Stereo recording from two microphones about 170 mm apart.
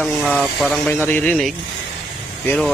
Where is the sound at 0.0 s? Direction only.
Centre (ahead or behind).